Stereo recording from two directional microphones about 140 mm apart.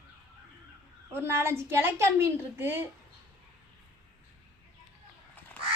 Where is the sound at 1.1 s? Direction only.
15° right (ahead or behind).